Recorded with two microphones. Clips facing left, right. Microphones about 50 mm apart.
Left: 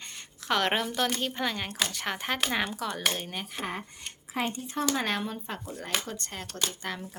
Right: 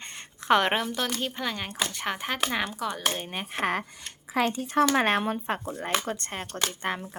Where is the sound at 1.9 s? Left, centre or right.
Centre.